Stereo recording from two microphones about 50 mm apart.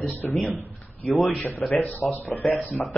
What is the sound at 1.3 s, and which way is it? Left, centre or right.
Speech, left.